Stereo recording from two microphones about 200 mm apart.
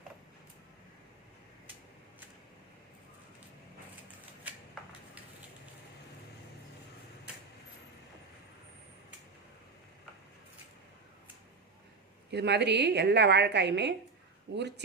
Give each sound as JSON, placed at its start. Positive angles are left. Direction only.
{"t": 12.3, "sound": "a woman's voice", "side_deg": -55}